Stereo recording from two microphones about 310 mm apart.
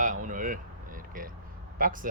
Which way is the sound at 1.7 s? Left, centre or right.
Right.